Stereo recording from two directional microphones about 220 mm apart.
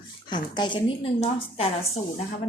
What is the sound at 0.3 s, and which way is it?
A woman's voice, 20° left (ahead or behind).